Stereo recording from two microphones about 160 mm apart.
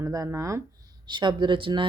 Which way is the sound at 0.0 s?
20° right (ahead or behind).